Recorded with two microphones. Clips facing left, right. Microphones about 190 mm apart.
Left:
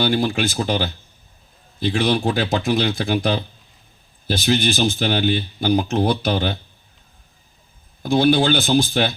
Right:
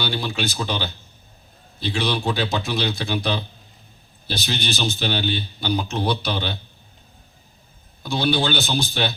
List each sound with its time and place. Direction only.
0.0 s speech: 50° left (ahead or behind)
8.0 s speech: 50° left (ahead or behind)